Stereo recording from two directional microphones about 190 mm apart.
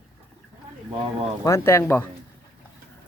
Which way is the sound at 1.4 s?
15° left (ahead or behind).